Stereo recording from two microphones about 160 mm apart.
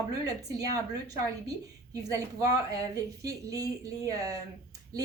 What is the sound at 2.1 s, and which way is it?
Speech, 20° right (ahead or behind).